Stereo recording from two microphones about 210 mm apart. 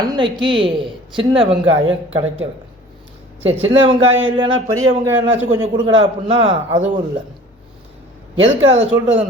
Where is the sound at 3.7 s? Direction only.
25° right (ahead or behind).